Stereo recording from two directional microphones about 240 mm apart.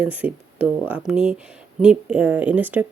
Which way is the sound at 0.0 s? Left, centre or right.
Centre.